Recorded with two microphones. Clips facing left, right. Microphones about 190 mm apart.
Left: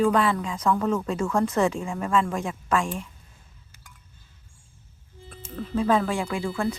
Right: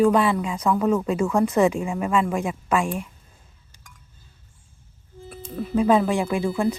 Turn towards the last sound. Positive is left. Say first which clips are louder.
# right 4 dB
turn(degrees=-15)  # may be behind; listen again after turning